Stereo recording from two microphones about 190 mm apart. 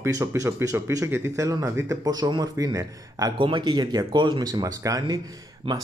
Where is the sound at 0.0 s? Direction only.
15° right (ahead or behind).